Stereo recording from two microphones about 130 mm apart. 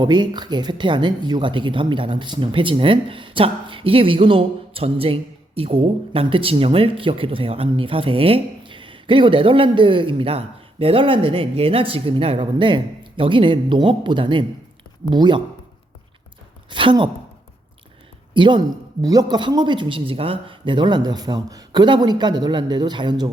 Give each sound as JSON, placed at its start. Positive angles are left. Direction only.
{"t": 0.0, "sound": "speech", "side_deg": -35}
{"t": 16.6, "sound": "speech", "side_deg": -40}
{"t": 18.3, "sound": "speech", "side_deg": -35}